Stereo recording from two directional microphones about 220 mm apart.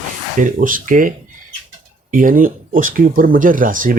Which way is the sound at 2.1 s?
40° right (ahead or behind).